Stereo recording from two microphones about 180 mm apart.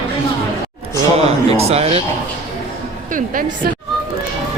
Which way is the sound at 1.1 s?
35° right (ahead or behind).